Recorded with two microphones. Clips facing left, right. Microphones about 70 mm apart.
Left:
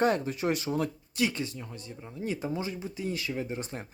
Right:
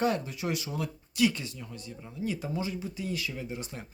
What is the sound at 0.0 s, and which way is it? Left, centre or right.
Speech, left.